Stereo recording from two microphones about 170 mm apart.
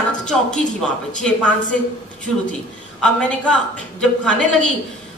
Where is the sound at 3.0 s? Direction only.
5° left (ahead or behind).